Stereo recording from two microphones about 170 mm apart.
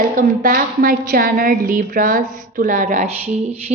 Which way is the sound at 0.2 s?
50° right (ahead or behind).